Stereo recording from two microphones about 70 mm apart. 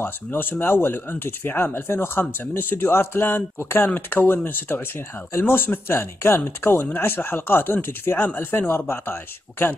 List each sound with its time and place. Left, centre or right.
0.0 s speech: left